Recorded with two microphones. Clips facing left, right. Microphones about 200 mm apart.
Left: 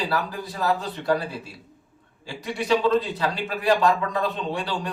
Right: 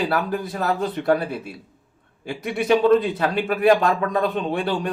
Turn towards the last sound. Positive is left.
turn(degrees=-55)  # may be behind; listen again after turning